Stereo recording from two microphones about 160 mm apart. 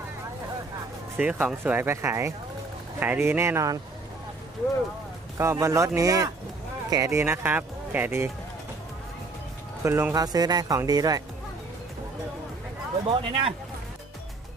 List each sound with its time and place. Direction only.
1.1 s speech: 10° right (ahead or behind)
5.4 s speech: 20° right (ahead or behind)
9.8 s speech: 15° right (ahead or behind)
13.1 s speech: 35° right (ahead or behind)